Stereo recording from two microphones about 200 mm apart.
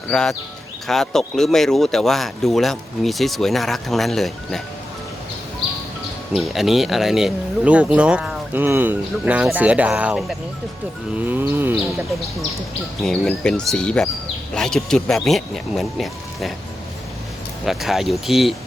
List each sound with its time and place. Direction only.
0.1 s speech: 5° left (ahead or behind)
6.3 s speech: centre (ahead or behind)
13.0 s speech: 5° left (ahead or behind)
17.7 s speech: centre (ahead or behind)